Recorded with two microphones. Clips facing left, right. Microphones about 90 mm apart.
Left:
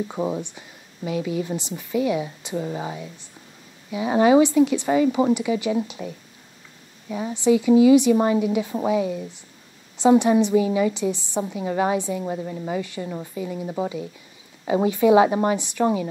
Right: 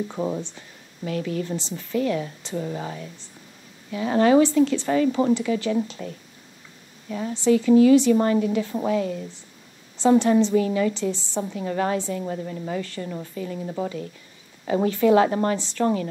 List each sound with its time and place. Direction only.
0.1 s a woman's voice: 15° left (ahead or behind)